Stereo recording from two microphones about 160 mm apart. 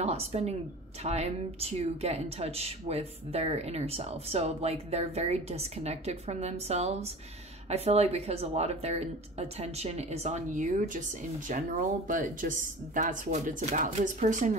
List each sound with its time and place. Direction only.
0.0 s a woman's voice: 40° right (ahead or behind)